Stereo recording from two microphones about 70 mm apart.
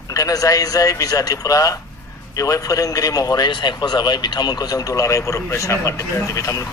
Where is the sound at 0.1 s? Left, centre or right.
Left.